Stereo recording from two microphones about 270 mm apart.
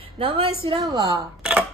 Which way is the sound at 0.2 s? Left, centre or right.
Right.